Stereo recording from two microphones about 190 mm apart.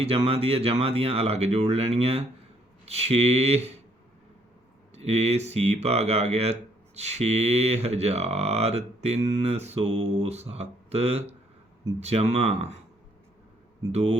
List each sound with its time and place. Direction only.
0.0 s speech: 30° right (ahead or behind)
4.9 s speech: 35° right (ahead or behind)
13.9 s speech: 35° right (ahead or behind)